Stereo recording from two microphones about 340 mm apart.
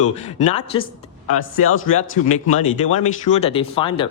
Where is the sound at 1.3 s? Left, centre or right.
Left.